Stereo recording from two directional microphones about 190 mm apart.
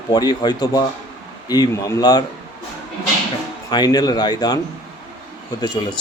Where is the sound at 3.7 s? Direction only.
20° left (ahead or behind).